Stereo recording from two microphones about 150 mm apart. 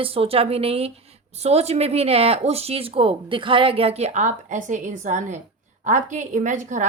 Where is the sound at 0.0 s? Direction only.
40° right (ahead or behind).